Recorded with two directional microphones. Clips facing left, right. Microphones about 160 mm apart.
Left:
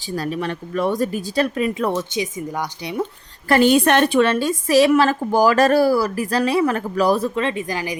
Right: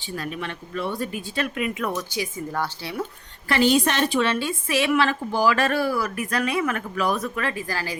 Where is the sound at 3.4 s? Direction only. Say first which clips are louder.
Left 5 dB; 50° left (ahead or behind); by 8.0 s 20° left (ahead or behind).